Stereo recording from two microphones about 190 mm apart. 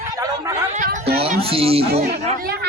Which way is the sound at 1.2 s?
30° right (ahead or behind).